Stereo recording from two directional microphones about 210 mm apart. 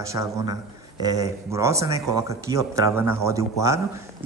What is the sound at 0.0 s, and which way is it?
A man's voice, 15° right (ahead or behind).